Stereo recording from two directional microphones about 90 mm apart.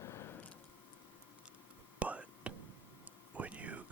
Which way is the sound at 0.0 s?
30° left (ahead or behind).